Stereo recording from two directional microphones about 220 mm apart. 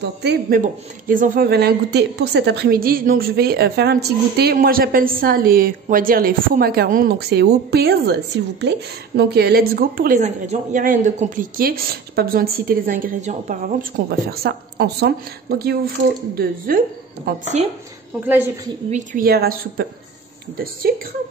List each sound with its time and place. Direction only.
0.0 s a woman's voice: 50° right (ahead or behind); by 17.6 s 30° right (ahead or behind)
18.2 s a woman's voice: 10° right (ahead or behind)
18.9 s a woman's voice: 35° right (ahead or behind)